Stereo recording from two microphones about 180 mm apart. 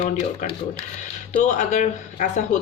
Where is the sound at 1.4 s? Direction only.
40° left (ahead or behind).